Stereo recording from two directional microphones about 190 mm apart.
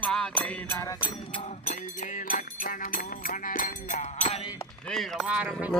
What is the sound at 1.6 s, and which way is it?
Music, 45° left (ahead or behind).